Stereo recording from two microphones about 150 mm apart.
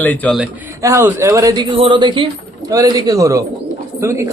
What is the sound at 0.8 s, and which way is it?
Speech, 20° right (ahead or behind).